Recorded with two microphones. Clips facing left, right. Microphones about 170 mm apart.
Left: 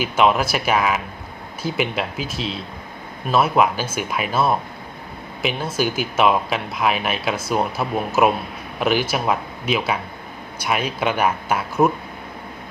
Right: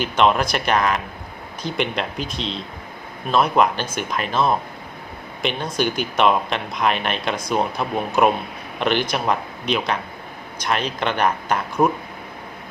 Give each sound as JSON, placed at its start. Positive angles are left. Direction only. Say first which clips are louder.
{"t": 0.0, "sound": "speech", "louder": "even", "side_deg": 5}